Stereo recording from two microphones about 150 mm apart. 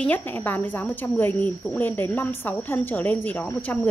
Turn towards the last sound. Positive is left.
turn(degrees=10)  # may be behind; listen again after turning